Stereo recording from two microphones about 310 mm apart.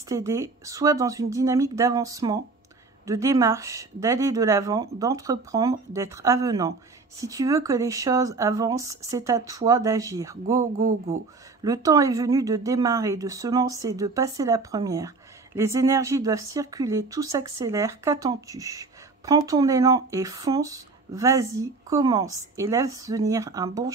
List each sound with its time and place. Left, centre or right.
0.1 s speech: centre
11.6 s speech: centre